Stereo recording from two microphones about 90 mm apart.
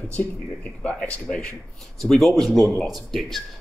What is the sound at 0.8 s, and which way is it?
A man's voice, 10° left (ahead or behind).